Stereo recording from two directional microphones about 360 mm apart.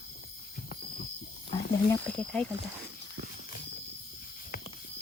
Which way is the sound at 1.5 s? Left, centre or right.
Centre.